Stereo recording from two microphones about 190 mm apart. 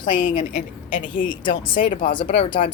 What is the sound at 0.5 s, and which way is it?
Speech, 45° left (ahead or behind).